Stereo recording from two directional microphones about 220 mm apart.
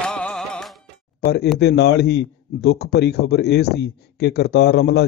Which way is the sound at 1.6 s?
50° left (ahead or behind).